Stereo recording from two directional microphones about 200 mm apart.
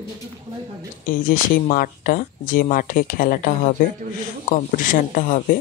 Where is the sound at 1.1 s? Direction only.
45° left (ahead or behind).